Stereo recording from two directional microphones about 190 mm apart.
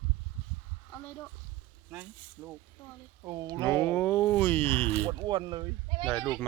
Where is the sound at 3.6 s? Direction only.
10° left (ahead or behind).